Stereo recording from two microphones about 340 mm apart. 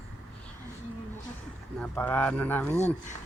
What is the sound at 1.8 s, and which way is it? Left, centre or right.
Speech, centre.